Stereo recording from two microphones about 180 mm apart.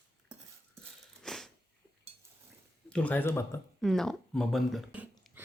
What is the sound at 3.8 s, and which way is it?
Speech, centre (ahead or behind).